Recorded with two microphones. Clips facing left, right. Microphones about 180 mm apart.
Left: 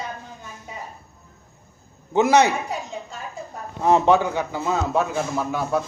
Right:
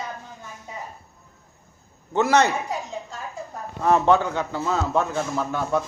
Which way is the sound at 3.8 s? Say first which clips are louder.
Left 1 dB; 20° left (ahead or behind).